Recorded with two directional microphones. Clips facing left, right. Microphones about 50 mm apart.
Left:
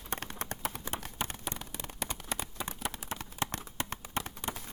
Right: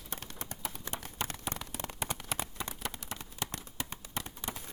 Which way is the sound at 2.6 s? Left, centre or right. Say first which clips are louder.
Left 2 dB; centre.